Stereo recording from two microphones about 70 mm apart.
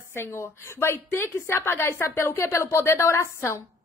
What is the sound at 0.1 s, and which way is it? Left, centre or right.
A woman's voice, left.